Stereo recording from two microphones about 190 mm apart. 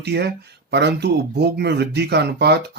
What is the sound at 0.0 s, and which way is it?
Speech, 60° right (ahead or behind).